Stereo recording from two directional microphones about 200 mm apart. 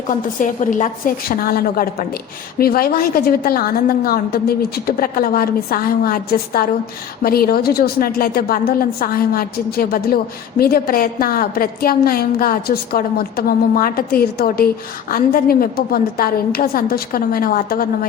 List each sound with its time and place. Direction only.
0.1 s a woman's voice: 40° left (ahead or behind)